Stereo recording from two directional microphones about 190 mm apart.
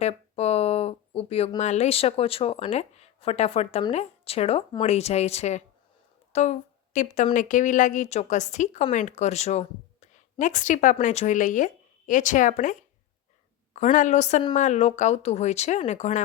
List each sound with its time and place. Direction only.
0.0 s a woman's voice: 35° left (ahead or behind)
13.7 s a woman's voice: 40° left (ahead or behind)